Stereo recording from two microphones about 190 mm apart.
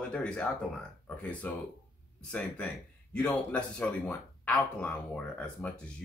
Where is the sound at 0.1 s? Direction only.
5° left (ahead or behind).